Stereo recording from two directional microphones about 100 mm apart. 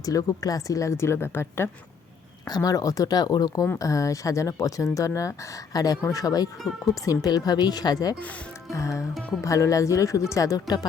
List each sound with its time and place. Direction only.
0.0 s a woman's voice: 35° left (ahead or behind)
2.5 s speech: 35° left (ahead or behind)
6.6 s speech: centre (ahead or behind)
7.0 s speech: 35° left (ahead or behind)